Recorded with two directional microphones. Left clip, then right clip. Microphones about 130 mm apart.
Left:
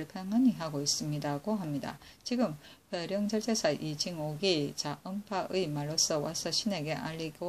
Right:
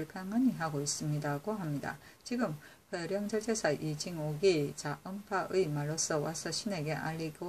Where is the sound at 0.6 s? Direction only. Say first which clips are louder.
Left 2 dB; 10° left (ahead or behind).